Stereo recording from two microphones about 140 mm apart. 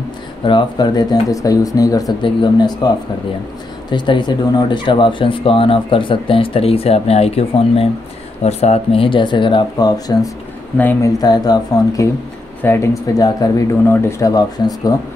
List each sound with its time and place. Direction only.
0.5 s speech: 30° left (ahead or behind)
3.9 s speech: 35° left (ahead or behind)
10.8 s speech: 15° left (ahead or behind)
11.1 s speech: 30° left (ahead or behind)